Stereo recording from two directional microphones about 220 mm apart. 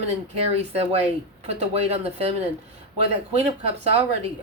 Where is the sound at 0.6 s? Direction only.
30° right (ahead or behind).